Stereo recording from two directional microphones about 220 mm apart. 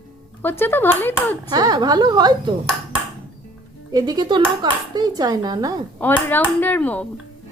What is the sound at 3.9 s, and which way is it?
Speech, 20° right (ahead or behind).